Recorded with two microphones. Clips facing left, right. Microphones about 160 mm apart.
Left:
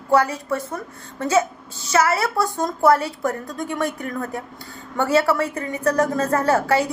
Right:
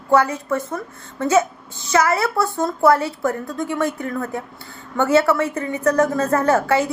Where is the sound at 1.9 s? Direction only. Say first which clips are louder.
Right 1 dB; 30° left (ahead or behind).